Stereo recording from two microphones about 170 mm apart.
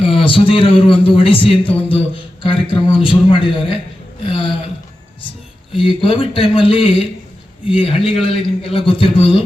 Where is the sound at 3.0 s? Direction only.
30° left (ahead or behind).